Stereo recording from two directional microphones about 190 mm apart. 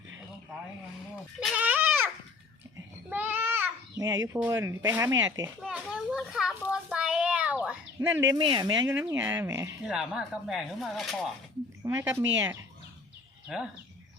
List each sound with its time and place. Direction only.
1.5 s goat: 10° right (ahead or behind)
3.1 s a sound: 10° right (ahead or behind)
4.4 s speech: 15° right (ahead or behind)
5.6 s child singing: 5° right (ahead or behind); by 9.0 s 20° right (ahead or behind)
9.0 s speech: 10° right (ahead or behind)
9.8 s speech: 5° right (ahead or behind)
11.8 s a woman's voice: 20° right (ahead or behind)